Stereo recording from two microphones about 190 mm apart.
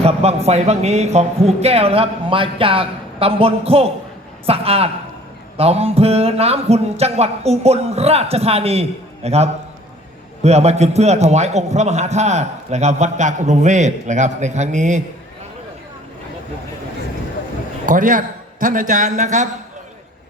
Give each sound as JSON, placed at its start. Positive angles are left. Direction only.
{"t": 0.0, "sound": "a man's voice", "side_deg": -35}
{"t": 17.8, "sound": "a man's voice", "side_deg": -45}